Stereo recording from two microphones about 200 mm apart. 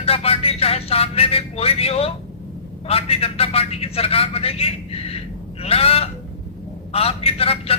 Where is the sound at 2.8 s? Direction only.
30° left (ahead or behind).